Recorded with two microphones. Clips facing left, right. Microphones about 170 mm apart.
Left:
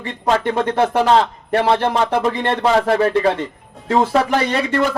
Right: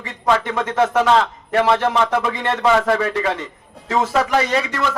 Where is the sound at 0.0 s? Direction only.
30° left (ahead or behind).